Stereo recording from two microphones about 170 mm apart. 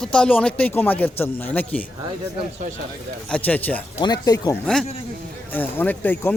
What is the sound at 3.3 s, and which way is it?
Speech, 10° left (ahead or behind).